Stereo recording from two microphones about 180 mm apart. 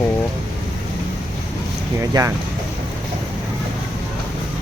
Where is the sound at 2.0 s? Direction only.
15° right (ahead or behind).